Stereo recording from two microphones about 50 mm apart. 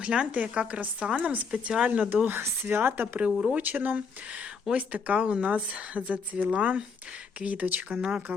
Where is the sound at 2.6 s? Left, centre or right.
Right.